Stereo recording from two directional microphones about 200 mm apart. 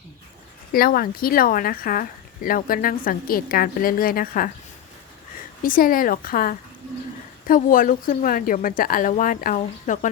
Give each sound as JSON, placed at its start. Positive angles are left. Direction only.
{"t": 0.7, "sound": "speech", "side_deg": 45}
{"t": 5.6, "sound": "speech", "side_deg": 45}